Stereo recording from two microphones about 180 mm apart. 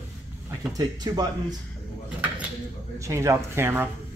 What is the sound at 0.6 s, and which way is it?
Speech, 20° right (ahead or behind).